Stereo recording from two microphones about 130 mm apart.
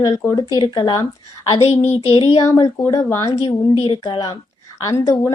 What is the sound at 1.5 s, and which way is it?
Child singing, 50° left (ahead or behind).